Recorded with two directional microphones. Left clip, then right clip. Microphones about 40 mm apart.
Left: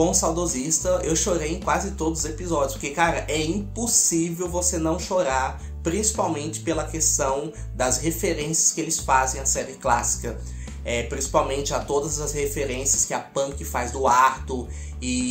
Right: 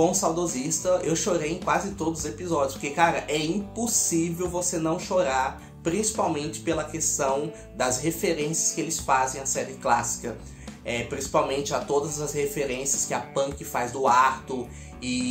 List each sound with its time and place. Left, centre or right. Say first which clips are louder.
0.0 s speech: left 1 dB; left
10.9 s speech: left 2 dB; left